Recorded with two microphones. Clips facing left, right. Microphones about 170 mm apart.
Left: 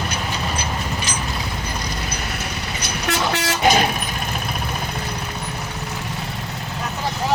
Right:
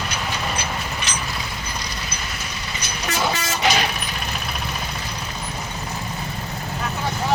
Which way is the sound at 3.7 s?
45° left (ahead or behind).